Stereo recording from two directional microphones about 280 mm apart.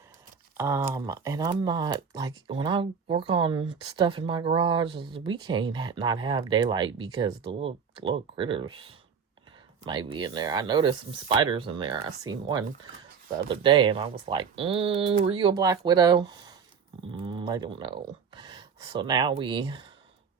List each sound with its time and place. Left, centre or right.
0.5 s speech: centre
9.8 s speech: centre
13.5 s speech: centre